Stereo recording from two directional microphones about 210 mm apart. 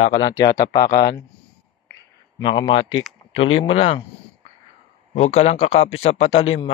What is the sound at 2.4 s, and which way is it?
Speech, 20° left (ahead or behind).